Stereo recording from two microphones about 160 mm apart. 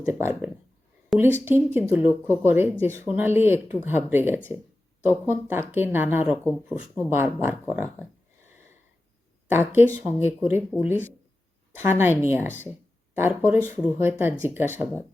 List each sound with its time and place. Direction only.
0.0 s speech: 15° right (ahead or behind)
1.1 s a woman's voice: centre (ahead or behind)
1.5 s speech: 15° right (ahead or behind)
9.5 s speech: 15° right (ahead or behind)
12.5 s speech: 10° left (ahead or behind)
13.1 s speech: 15° right (ahead or behind)